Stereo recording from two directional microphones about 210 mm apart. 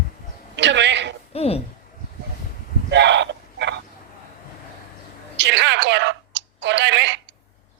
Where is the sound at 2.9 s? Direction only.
55° right (ahead or behind).